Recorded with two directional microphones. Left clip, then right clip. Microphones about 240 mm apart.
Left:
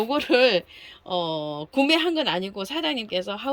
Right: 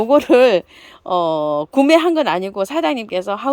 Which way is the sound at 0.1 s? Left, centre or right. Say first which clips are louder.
Right 9 dB; centre.